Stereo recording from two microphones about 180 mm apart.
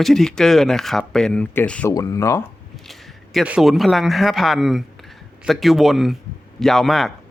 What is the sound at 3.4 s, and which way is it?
A man's voice, 5° right (ahead or behind).